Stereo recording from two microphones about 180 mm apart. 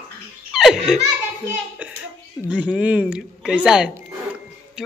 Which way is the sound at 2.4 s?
10° right (ahead or behind).